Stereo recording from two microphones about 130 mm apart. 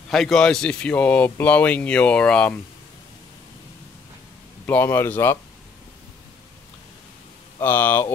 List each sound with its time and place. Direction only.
0.1 s speech: 5° left (ahead or behind)
4.6 s speech: 15° left (ahead or behind)
7.6 s speech: 15° left (ahead or behind)